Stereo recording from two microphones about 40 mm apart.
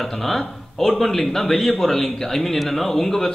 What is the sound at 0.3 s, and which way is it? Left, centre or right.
A man's voice, centre.